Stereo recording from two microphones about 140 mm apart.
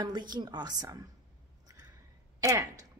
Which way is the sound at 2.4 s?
25° right (ahead or behind).